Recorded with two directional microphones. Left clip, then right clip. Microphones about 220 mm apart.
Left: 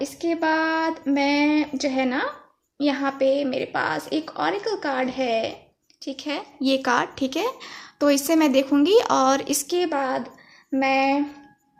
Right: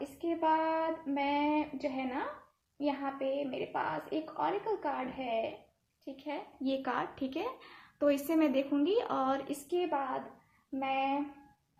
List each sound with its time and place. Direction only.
0.3 s child singing: 45° left (ahead or behind)
2.7 s a woman's voice: 45° left (ahead or behind)